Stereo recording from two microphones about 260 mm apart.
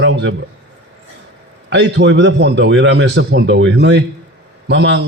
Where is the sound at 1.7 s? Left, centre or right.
Right.